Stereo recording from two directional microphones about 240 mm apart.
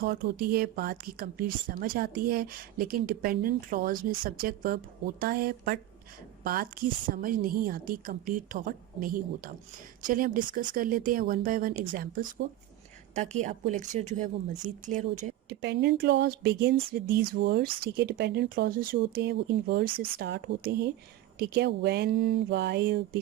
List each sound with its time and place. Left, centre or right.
0.0 s speech: right
13.3 s speech: right
15.6 s speech: right